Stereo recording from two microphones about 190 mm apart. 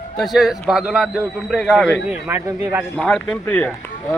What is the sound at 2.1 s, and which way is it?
Speech, 10° right (ahead or behind).